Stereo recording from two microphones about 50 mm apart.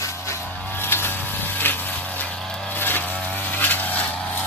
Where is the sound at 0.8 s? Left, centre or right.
Left.